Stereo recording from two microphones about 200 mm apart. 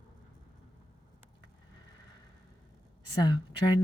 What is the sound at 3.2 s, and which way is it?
Speech, 20° left (ahead or behind).